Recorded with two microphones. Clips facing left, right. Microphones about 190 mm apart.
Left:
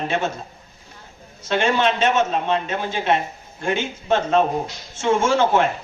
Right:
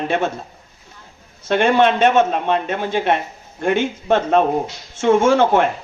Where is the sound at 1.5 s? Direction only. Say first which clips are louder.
Right 5 dB; 55° right (ahead or behind).